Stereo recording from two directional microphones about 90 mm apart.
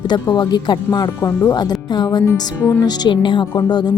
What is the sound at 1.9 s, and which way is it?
A woman's voice, 50° left (ahead or behind).